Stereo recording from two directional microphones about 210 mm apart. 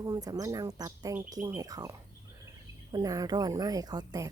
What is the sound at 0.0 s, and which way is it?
Speech, 15° right (ahead or behind).